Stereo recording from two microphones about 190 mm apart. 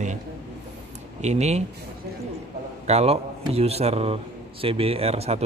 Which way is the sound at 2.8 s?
35° right (ahead or behind).